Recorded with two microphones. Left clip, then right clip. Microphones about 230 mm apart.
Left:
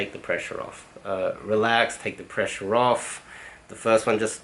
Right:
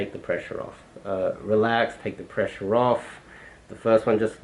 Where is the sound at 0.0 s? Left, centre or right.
Centre.